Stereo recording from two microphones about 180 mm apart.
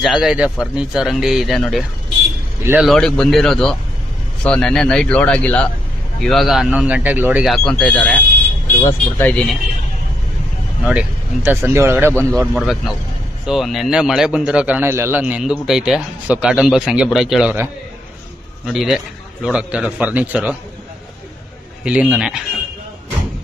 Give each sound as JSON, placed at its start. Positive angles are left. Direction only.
{"t": 0.0, "sound": "a man's voice", "side_deg": 0}
{"t": 2.6, "sound": "speech", "side_deg": -10}
{"t": 2.9, "sound": "a man's voice", "side_deg": 5}
{"t": 7.5, "sound": "a man's voice", "side_deg": 5}
{"t": 10.9, "sound": "speech", "side_deg": -10}
{"t": 12.1, "sound": "a man's voice", "side_deg": 10}
{"t": 18.7, "sound": "a man's voice", "side_deg": 0}
{"t": 21.8, "sound": "a man's voice", "side_deg": -5}